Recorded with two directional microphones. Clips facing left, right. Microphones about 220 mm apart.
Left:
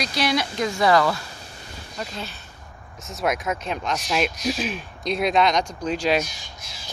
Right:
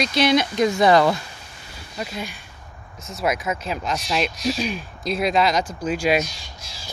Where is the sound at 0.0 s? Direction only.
20° right (ahead or behind).